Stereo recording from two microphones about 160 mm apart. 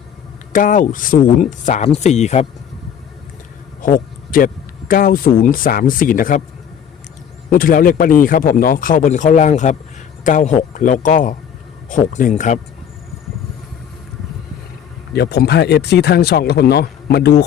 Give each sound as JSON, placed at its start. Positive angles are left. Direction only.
{"t": 0.5, "sound": "speech", "side_deg": 55}
{"t": 3.8, "sound": "speech", "side_deg": 60}
{"t": 7.5, "sound": "a man's voice", "side_deg": 60}
{"t": 15.1, "sound": "speech", "side_deg": 90}